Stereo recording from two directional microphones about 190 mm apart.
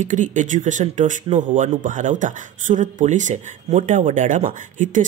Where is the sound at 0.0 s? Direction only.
40° right (ahead or behind).